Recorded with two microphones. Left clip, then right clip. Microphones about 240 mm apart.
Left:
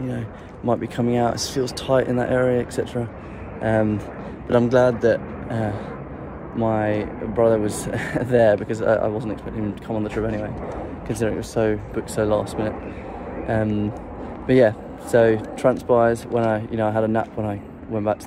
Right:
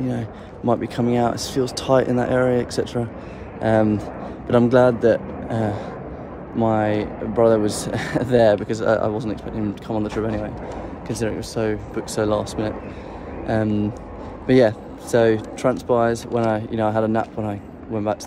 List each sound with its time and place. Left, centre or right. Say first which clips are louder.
0.7 s speech: right 1 dB; centre